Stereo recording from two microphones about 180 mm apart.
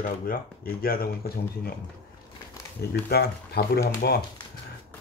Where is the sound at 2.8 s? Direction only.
60° left (ahead or behind).